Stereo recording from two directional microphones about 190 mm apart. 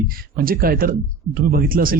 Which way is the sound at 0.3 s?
50° right (ahead or behind).